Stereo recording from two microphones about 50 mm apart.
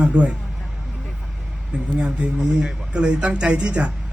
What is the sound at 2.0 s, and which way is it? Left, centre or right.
Speech, right.